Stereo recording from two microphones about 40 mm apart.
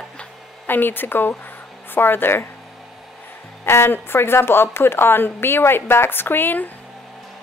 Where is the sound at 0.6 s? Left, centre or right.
Left.